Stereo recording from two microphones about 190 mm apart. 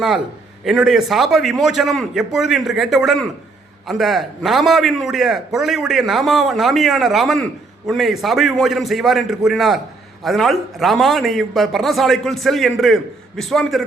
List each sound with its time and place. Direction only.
0.6 s a man's voice: centre (ahead or behind)